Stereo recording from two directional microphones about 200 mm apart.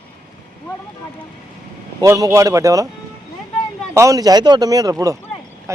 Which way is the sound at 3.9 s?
15° right (ahead or behind).